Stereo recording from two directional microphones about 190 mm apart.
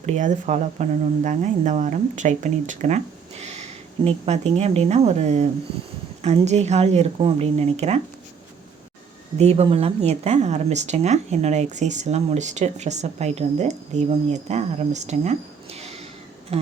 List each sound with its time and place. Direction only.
0.0 s speech: 40° right (ahead or behind)
9.4 s speech: 35° right (ahead or behind)
16.5 s a sound: 30° right (ahead or behind)